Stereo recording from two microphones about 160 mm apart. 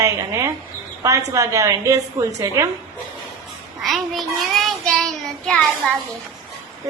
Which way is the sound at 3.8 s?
Centre (ahead or behind).